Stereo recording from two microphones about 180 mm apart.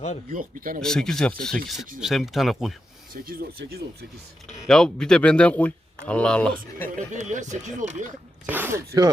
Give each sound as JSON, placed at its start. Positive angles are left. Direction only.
{"t": 0.3, "sound": "speech", "side_deg": -50}
{"t": 0.8, "sound": "speech", "side_deg": 5}
{"t": 3.1, "sound": "speech", "side_deg": -55}
{"t": 4.4, "sound": "speech", "side_deg": 5}
{"t": 7.1, "sound": "speech", "side_deg": -40}
{"t": 8.4, "sound": "speech", "side_deg": -10}